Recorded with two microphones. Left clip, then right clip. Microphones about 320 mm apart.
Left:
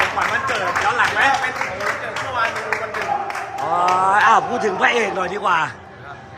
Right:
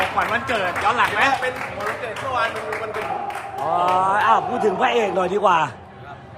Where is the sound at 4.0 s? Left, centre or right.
Centre.